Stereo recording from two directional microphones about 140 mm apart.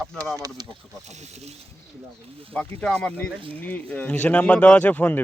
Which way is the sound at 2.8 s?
5° left (ahead or behind).